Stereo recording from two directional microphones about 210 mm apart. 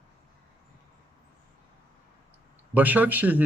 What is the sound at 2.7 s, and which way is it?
Speech, 10° right (ahead or behind).